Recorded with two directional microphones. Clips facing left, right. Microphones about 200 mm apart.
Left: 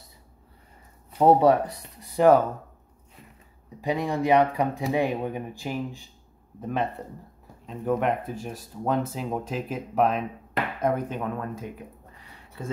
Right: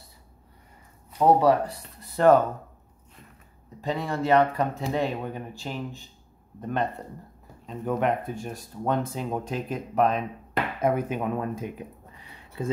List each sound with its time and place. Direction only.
1.1 s speech: 25° left (ahead or behind)
3.8 s speech: 15° left (ahead or behind); by 11.7 s 15° right (ahead or behind)